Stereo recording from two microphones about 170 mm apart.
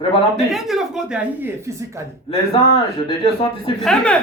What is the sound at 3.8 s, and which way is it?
Speech, 5° left (ahead or behind).